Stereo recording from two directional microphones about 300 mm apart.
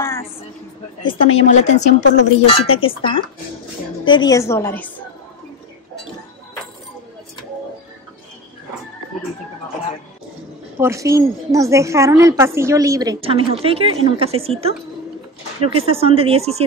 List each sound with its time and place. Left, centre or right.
0.0 s a sound: centre
1.0 s a woman's voice: centre
10.8 s a woman's voice: centre